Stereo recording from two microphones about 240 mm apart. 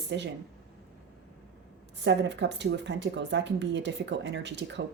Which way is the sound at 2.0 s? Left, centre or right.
Right.